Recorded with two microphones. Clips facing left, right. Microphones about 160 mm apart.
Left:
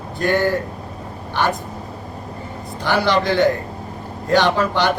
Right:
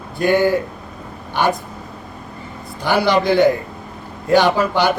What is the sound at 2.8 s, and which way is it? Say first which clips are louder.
A man's voice: right 2 dB; 10° right (ahead or behind).